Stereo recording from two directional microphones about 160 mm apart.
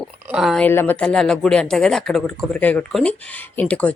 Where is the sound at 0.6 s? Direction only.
10° left (ahead or behind).